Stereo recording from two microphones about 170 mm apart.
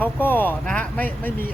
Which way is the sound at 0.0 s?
10° left (ahead or behind).